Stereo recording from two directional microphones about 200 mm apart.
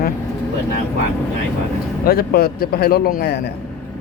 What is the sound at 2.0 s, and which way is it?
Speech, 50° left (ahead or behind).